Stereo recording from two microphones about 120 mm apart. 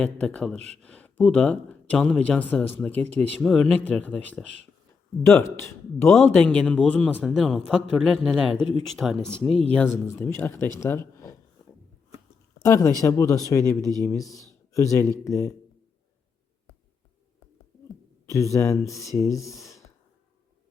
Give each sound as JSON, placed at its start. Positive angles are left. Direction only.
{"t": 0.0, "sound": "speech", "side_deg": 10}
{"t": 6.1, "sound": "speech", "side_deg": 5}
{"t": 9.6, "sound": "speech", "side_deg": 15}
{"t": 12.6, "sound": "speech", "side_deg": 30}
{"t": 18.3, "sound": "speech", "side_deg": 25}